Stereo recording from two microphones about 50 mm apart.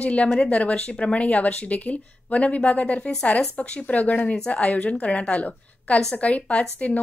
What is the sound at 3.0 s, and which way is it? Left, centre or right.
Speech, centre.